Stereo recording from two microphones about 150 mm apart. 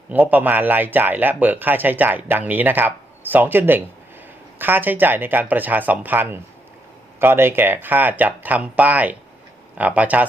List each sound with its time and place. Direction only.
0.1 s speech: 10° right (ahead or behind)